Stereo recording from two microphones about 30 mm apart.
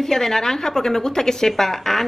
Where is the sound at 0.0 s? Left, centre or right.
Centre.